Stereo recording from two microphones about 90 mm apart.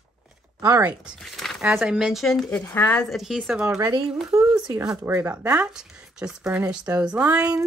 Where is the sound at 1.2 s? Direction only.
5° left (ahead or behind).